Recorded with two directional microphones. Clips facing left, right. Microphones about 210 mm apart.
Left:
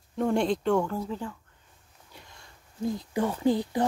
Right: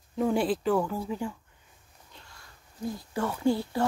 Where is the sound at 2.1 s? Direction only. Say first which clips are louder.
Left 3 dB; 15° left (ahead or behind).